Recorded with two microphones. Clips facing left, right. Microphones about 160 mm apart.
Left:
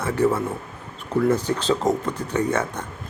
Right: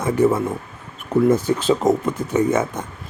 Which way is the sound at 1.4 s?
10° right (ahead or behind).